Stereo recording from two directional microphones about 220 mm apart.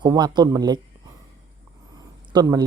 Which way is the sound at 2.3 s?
15° right (ahead or behind).